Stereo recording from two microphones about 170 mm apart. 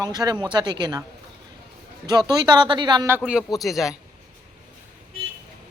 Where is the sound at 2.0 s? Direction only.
25° right (ahead or behind).